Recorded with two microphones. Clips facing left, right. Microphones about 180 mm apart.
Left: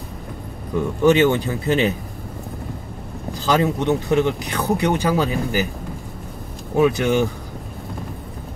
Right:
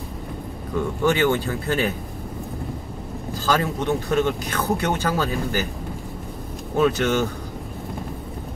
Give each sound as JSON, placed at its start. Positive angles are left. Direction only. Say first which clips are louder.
{"t": 1.0, "sound": "speech", "louder": "left 5 dB", "side_deg": 20}
{"t": 3.3, "sound": "speech", "louder": "left 4 dB", "side_deg": 20}
{"t": 6.8, "sound": "speech", "louder": "left 3 dB", "side_deg": 15}